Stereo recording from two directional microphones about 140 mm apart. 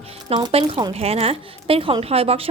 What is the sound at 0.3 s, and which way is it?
Speech, 40° right (ahead or behind).